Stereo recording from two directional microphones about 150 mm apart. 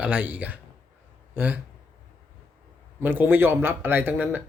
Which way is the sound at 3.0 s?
15° right (ahead or behind).